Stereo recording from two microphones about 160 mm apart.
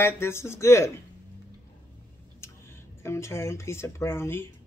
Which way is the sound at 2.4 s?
15° left (ahead or behind).